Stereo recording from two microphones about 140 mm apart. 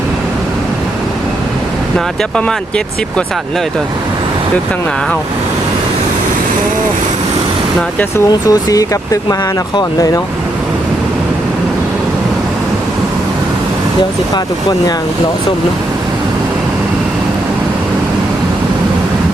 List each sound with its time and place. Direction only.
2.3 s speech: 5° left (ahead or behind)
8.4 s speech: 25° left (ahead or behind)
14.3 s speech: 30° left (ahead or behind)